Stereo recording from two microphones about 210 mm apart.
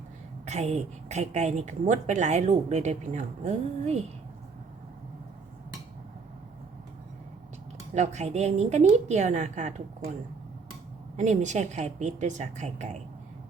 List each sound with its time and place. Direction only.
0.4 s a woman's voice: 30° right (ahead or behind)
7.9 s a woman's voice: 35° right (ahead or behind)
11.2 s a woman's voice: 35° right (ahead or behind)